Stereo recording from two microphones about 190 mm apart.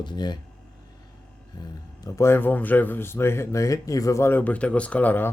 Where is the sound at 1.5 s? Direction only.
20° left (ahead or behind).